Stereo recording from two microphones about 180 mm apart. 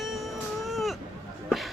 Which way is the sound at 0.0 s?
Centre (ahead or behind).